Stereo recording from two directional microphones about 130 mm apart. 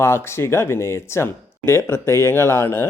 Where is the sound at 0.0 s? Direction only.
20° left (ahead or behind).